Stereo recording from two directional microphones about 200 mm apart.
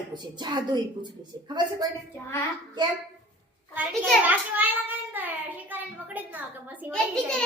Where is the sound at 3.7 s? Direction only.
10° right (ahead or behind).